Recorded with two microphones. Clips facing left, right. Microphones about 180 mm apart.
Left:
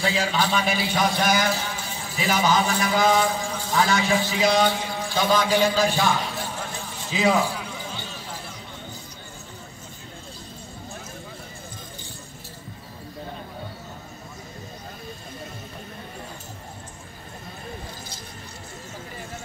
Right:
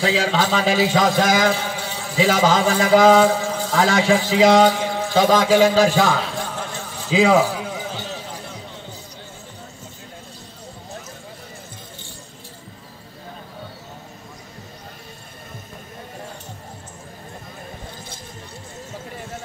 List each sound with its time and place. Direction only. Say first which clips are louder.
0.0 s a man's voice: right 4 dB; 90° right